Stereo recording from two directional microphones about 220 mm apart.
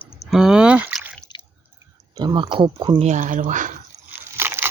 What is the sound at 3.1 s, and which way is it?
Speech, 35° right (ahead or behind).